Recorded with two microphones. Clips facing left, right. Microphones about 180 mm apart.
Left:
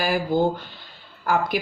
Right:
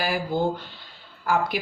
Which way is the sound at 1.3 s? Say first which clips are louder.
Left 2 dB; 50° left (ahead or behind).